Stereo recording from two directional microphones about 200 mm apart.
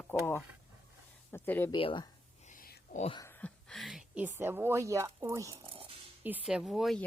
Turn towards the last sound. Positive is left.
turn(degrees=0)  # may be behind; listen again after turning